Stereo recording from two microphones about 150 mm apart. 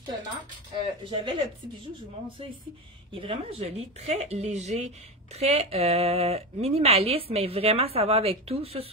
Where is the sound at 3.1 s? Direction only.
40° right (ahead or behind).